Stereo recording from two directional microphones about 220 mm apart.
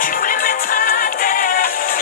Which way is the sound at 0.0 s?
40° left (ahead or behind).